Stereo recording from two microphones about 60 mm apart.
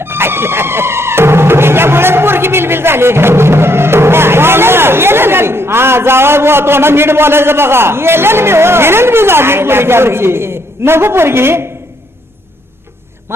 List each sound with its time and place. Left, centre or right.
0.0 s speech: right